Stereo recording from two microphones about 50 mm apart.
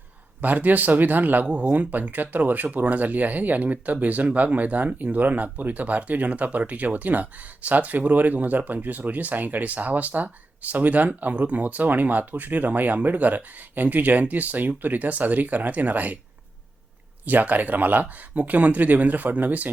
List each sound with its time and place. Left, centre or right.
0.4 s speech: right
1.5 s speech: right
1.7 s speech: right
17.2 s speech: right